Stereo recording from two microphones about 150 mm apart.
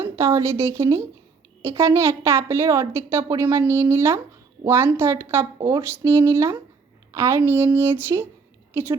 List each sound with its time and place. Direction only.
0.0 s a woman's voice: 20° right (ahead or behind)